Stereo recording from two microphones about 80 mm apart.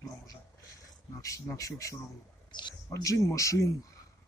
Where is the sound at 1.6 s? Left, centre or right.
Left.